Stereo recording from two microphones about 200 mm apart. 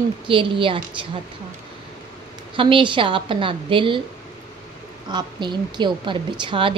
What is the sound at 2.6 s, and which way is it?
A woman's voice, 25° right (ahead or behind).